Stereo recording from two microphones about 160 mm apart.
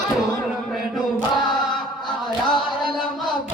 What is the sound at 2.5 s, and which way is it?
Music, centre (ahead or behind).